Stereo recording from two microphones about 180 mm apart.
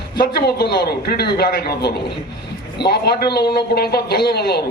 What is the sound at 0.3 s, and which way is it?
A man's voice, 60° left (ahead or behind).